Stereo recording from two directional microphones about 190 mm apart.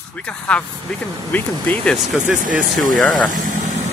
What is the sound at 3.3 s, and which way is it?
Vehicle, 40° right (ahead or behind).